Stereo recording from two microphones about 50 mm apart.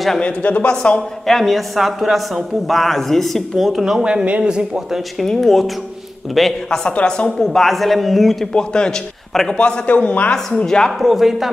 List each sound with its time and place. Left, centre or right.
0.2 s speech: left
1.2 s a man's voice: centre
4.0 s speech: right
5.2 s a man's voice: centre
7.1 s speech: centre
7.3 s a man's voice: centre
8.5 s a man's voice: centre
9.8 s speech: left
10.3 s speech: centre
11.0 s a man's voice: centre